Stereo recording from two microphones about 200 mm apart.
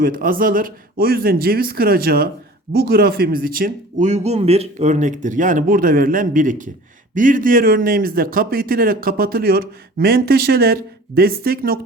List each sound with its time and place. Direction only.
0.0 s speech: 45° right (ahead or behind)